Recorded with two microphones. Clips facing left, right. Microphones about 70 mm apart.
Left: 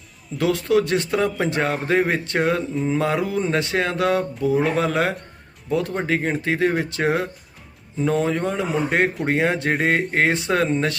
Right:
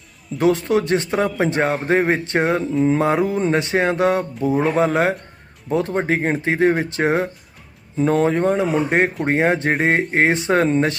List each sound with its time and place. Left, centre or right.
0.3 s a man's voice: right
8.1 s a man's voice: right